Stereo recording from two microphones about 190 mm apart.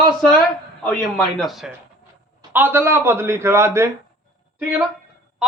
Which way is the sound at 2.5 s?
10° right (ahead or behind).